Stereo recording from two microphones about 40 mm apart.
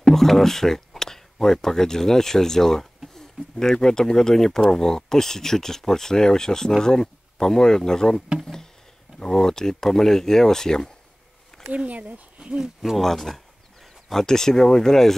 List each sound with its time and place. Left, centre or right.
0.0 s speech: centre
9.2 s speech: centre
11.7 s speech: right
12.9 s speech: centre